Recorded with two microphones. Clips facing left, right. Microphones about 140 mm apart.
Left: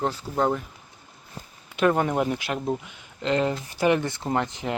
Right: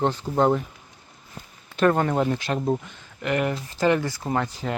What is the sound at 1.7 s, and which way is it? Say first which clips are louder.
Speech: right 1 dB; 5° left (ahead or behind).